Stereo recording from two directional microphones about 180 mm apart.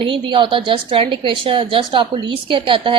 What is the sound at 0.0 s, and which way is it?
A woman's voice, 30° right (ahead or behind).